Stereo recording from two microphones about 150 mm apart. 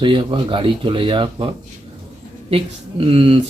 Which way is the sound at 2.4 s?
40° right (ahead or behind).